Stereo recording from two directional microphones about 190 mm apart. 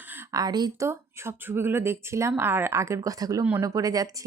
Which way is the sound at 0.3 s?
20° right (ahead or behind).